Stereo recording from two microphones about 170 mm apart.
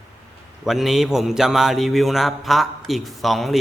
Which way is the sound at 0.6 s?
Centre (ahead or behind).